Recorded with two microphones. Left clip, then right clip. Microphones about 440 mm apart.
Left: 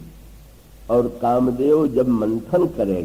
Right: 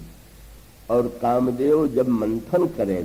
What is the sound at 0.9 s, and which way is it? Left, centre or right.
A man's voice, left.